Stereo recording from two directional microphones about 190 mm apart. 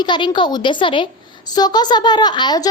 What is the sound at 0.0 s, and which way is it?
A woman's voice, 25° left (ahead or behind).